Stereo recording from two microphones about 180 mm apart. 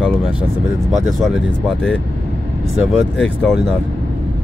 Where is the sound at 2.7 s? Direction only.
5° left (ahead or behind).